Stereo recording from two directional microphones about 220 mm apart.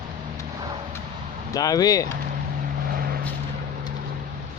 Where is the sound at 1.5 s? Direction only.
15° left (ahead or behind).